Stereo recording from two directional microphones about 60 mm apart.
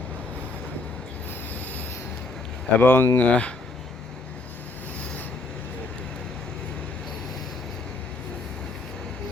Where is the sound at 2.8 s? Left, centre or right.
Left.